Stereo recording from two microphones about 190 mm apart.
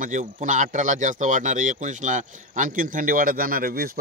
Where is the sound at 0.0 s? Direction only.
40° right (ahead or behind).